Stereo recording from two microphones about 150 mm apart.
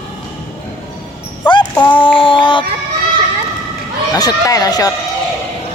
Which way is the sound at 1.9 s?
35° left (ahead or behind).